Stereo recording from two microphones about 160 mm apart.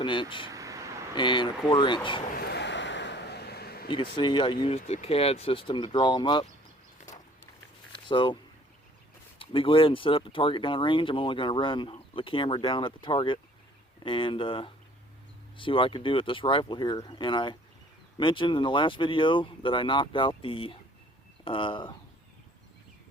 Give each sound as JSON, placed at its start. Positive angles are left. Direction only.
{"t": 0.0, "sound": "speech", "side_deg": 30}
{"t": 0.5, "sound": "vehicle", "side_deg": -20}
{"t": 1.1, "sound": "speech", "side_deg": 30}
{"t": 2.3, "sound": "a sound", "side_deg": 80}
{"t": 3.8, "sound": "speech", "side_deg": 30}
{"t": 7.9, "sound": "speech", "side_deg": 30}
{"t": 9.4, "sound": "speech", "side_deg": 30}